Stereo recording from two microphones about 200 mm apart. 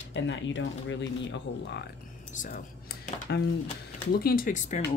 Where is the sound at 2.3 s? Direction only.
40° left (ahead or behind).